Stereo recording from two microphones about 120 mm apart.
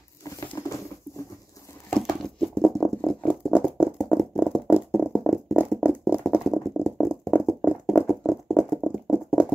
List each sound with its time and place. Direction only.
0.2 s patter: 25° left (ahead or behind)
2.0 s patter: centre (ahead or behind)
3.8 s a sound: 5° right (ahead or behind)